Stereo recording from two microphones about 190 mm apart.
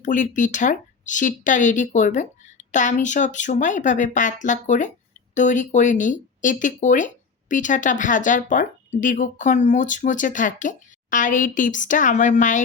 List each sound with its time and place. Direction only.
0.0 s speech: 40° left (ahead or behind)